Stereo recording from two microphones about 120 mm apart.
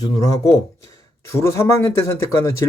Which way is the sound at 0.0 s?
30° left (ahead or behind).